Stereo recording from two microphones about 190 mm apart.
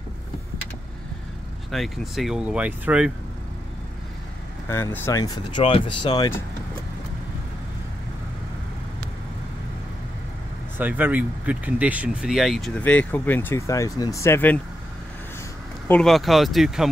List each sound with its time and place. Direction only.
1.7 s speech: centre (ahead or behind)
4.6 s speech: 10° left (ahead or behind)
10.8 s speech: 10° right (ahead or behind); by 14.6 s 10° left (ahead or behind)
15.9 s speech: centre (ahead or behind)